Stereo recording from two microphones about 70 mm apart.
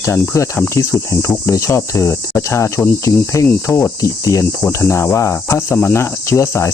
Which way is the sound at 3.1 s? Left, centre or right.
Left.